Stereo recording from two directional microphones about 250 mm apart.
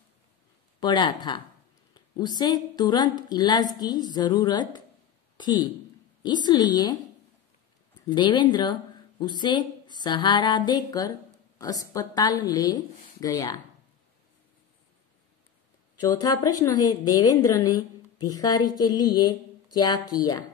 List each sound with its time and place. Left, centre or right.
0.7 s a woman's voice: centre
8.1 s a woman's voice: centre
16.0 s a woman's voice: centre